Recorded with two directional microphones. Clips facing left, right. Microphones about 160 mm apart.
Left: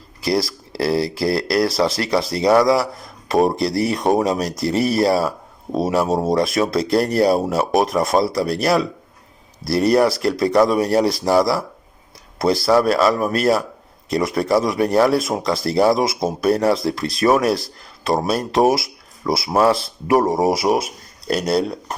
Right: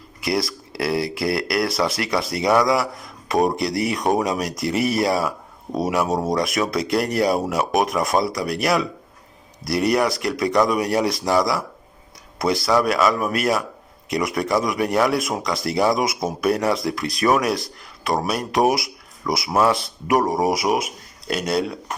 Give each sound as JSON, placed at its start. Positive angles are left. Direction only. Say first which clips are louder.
{"t": 0.2, "sound": "speech", "louder": "left 3 dB", "side_deg": 35}